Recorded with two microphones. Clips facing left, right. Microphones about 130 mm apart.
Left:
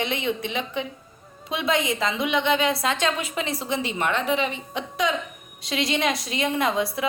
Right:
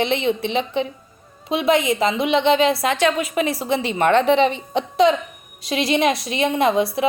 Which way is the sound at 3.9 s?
55° right (ahead or behind).